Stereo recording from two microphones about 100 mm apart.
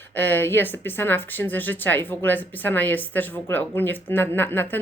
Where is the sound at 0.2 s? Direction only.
20° left (ahead or behind).